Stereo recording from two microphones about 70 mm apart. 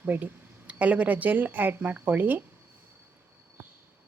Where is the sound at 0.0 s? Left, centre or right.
Right.